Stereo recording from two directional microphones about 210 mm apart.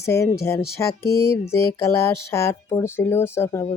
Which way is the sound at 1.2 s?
15° left (ahead or behind).